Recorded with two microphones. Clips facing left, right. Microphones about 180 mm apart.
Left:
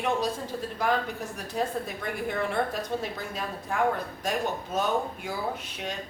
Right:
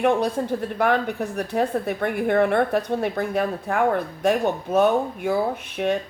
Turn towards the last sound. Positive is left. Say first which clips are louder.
# right 9 dB
turn(degrees=-60)  # may be behind; listen again after turning